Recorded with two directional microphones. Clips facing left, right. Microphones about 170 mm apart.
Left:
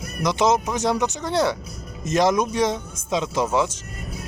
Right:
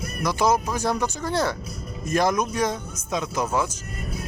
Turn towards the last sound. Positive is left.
turn(degrees=25)  # may be behind; listen again after turning